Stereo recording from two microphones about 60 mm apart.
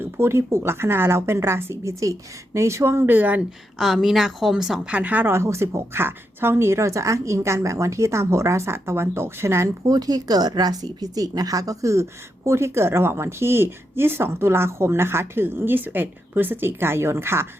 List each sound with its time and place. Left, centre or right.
0.0 s speech: right
3.8 s a woman's voice: centre
4.9 s speech: right
5.2 s speech: right
9.8 s speech: right
12.5 s speech: right